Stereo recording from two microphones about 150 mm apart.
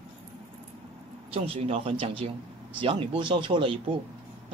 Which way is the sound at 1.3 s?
40° right (ahead or behind).